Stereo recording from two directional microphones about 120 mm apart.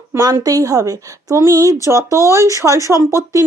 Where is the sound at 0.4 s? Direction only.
30° right (ahead or behind).